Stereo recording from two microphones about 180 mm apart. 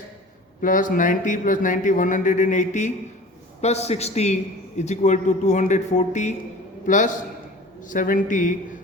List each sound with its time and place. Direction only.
0.6 s a man's voice: 50° left (ahead or behind)